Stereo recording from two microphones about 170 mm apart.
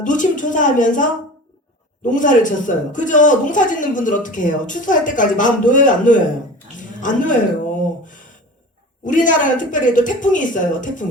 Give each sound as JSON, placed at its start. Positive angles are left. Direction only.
{"t": 0.0, "sound": "speech", "side_deg": 50}
{"t": 6.7, "sound": "a sound", "side_deg": 50}
{"t": 9.0, "sound": "speech", "side_deg": 50}